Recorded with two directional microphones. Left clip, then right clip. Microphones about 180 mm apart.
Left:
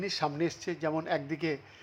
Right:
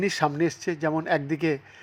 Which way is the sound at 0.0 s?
30° right (ahead or behind).